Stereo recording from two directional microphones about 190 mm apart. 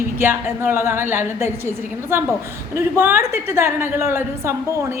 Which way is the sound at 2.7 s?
15° right (ahead or behind).